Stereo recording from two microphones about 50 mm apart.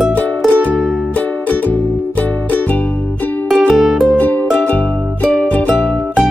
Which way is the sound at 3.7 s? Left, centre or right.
Centre.